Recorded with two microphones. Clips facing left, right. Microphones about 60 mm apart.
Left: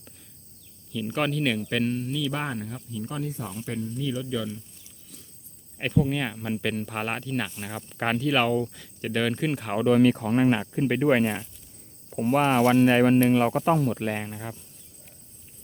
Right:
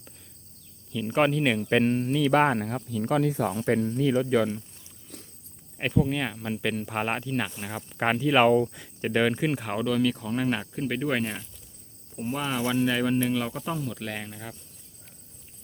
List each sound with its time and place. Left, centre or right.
1.1 s speech: centre
1.7 s speech: right
5.0 s a sound: right
5.7 s speech: centre
9.8 s speech: left
10.5 s speech: centre
12.1 s speech: left
12.4 s speech: left
13.9 s speech: left